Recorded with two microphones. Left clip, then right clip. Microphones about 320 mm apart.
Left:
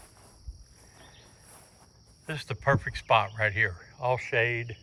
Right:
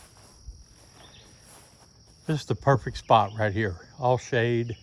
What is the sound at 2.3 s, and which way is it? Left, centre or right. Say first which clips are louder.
Speech: right 3 dB; centre.